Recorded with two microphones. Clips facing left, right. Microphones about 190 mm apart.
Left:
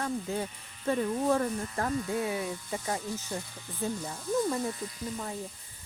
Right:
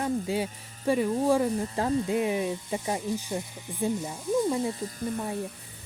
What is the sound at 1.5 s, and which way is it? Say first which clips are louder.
Speech: right 5 dB; 25° right (ahead or behind).